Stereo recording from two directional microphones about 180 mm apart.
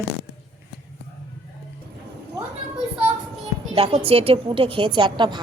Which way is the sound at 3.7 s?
30° right (ahead or behind).